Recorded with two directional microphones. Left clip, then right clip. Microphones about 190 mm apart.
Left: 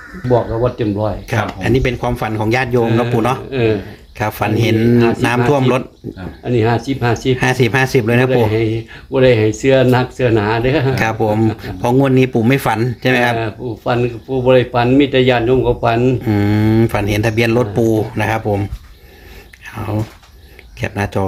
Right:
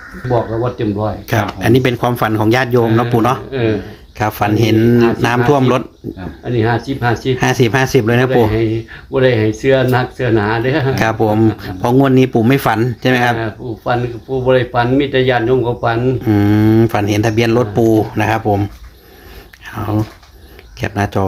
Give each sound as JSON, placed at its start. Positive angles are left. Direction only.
{"t": 0.8, "sound": "speech", "side_deg": 50}
{"t": 1.6, "sound": "speech", "side_deg": -25}
{"t": 3.5, "sound": "speech", "side_deg": 45}
{"t": 4.2, "sound": "speech", "side_deg": -5}
{"t": 6.4, "sound": "speech", "side_deg": 45}
{"t": 7.3, "sound": "speech", "side_deg": -5}
{"t": 9.1, "sound": "speech", "side_deg": 45}
{"t": 10.9, "sound": "speech", "side_deg": -10}
{"t": 13.3, "sound": "speech", "side_deg": 45}
{"t": 16.2, "sound": "speech", "side_deg": 0}